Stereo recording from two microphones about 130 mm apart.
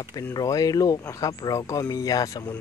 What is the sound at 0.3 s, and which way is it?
Speech, 30° left (ahead or behind).